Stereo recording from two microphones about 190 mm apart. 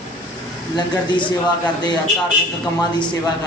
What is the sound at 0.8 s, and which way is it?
Speech, 25° left (ahead or behind).